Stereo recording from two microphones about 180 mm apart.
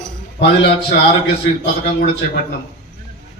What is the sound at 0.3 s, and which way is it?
A man's voice, 70° left (ahead or behind).